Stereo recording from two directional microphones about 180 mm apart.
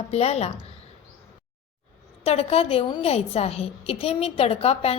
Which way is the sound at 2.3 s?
35° left (ahead or behind).